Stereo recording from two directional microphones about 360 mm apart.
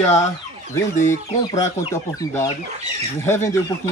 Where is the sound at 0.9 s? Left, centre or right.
Centre.